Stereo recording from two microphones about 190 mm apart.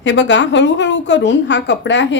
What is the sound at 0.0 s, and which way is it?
A woman's voice, 70° left (ahead or behind).